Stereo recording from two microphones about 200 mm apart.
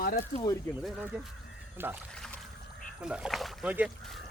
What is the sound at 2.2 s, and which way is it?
Boat, 5° left (ahead or behind).